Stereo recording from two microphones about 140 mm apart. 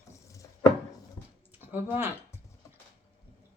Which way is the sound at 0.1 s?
20° left (ahead or behind).